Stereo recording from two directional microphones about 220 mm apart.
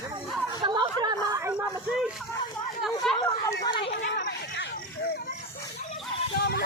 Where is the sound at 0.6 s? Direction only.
20° right (ahead or behind).